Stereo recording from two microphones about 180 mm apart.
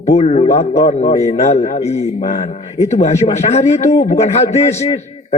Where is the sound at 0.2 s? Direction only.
35° left (ahead or behind).